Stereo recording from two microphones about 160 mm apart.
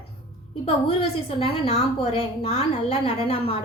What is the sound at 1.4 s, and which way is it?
Speech, 45° left (ahead or behind).